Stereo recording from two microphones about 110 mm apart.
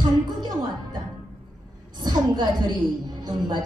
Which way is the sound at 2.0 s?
45° right (ahead or behind).